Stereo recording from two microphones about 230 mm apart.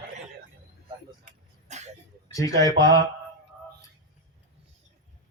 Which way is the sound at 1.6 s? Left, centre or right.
Right.